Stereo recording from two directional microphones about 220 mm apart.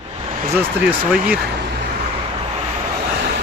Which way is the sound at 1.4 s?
45° right (ahead or behind).